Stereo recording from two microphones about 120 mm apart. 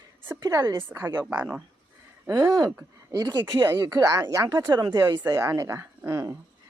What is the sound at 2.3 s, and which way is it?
Speech, 35° right (ahead or behind).